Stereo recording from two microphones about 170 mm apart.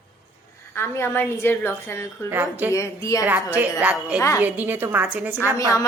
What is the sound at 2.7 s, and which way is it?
Speech, 20° left (ahead or behind).